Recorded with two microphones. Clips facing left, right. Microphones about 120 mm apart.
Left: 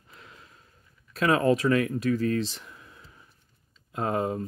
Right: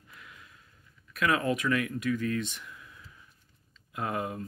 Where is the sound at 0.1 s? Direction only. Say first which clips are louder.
Left 2 dB; 30° left (ahead or behind).